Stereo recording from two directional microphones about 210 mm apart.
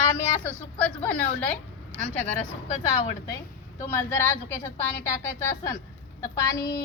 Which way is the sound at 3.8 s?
10° left (ahead or behind).